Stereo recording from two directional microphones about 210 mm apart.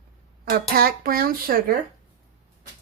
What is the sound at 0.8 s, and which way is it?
Speech, 45° right (ahead or behind).